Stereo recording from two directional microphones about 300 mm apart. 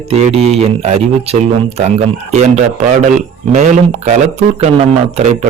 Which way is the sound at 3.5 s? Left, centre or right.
Right.